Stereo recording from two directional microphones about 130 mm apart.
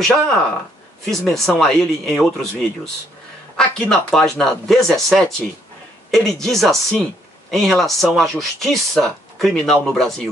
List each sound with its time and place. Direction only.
0.0 s speech: 5° left (ahead or behind)